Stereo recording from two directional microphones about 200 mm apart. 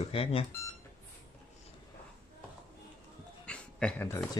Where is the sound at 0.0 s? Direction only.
30° left (ahead or behind).